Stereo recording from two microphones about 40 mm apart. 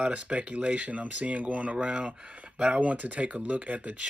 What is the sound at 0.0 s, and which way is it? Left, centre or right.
Speech, right.